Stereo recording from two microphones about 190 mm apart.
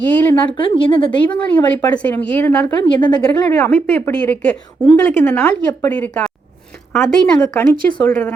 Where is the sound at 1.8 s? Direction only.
5° left (ahead or behind).